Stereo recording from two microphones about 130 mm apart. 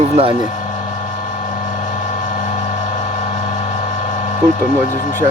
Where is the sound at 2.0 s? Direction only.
80° left.